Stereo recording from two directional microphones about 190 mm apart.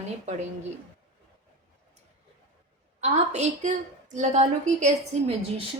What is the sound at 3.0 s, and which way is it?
A woman's voice, 35° right (ahead or behind).